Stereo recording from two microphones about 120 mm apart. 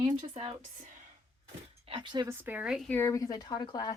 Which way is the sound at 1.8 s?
45° right (ahead or behind).